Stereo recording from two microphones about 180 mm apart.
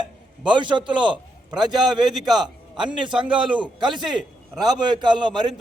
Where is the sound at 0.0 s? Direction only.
25° right (ahead or behind).